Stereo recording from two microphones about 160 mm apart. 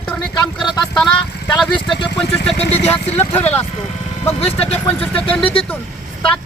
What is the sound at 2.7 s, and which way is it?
Speech, 40° left (ahead or behind).